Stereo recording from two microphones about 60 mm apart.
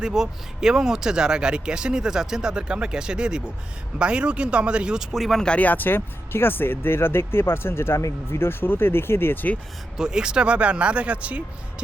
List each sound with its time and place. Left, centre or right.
0.0 s speech: centre
5.1 s speech: centre
5.5 s speech: left
10.0 s speech: centre